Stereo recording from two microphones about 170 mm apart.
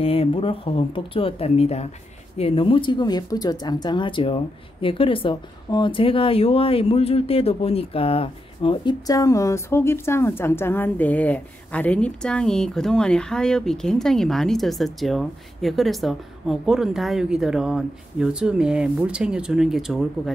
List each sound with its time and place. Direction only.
0.0 s speech: 35° left (ahead or behind)
9.0 s a woman's voice: 20° left (ahead or behind); by 20.1 s centre (ahead or behind)